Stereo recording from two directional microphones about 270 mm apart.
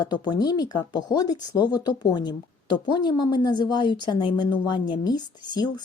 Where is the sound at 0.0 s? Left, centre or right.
Centre.